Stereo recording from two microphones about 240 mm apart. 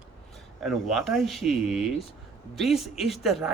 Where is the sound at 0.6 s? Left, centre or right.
Centre.